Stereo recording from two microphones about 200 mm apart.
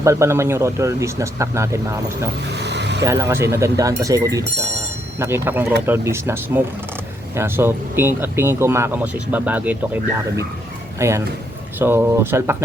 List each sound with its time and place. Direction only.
0.0 s speech: 15° right (ahead or behind)
2.6 s vehicle: 60° right (ahead or behind)
3.0 s speech: 15° right (ahead or behind)